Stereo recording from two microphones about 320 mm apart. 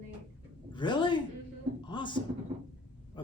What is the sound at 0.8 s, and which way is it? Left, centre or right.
Speech, centre.